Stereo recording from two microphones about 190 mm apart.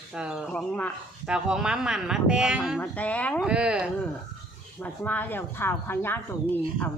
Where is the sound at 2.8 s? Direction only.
10° left (ahead or behind).